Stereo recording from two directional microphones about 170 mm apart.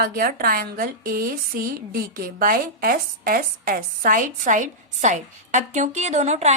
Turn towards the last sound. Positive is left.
turn(degrees=-40)  # may be behind; listen again after turning